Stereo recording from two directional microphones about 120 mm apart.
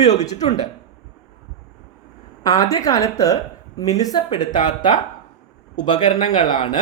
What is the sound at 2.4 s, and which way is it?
A woman's voice, 30° left (ahead or behind).